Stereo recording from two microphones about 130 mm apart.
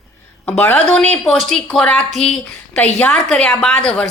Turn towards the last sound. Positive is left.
turn(degrees=5)  # may be behind; listen again after turning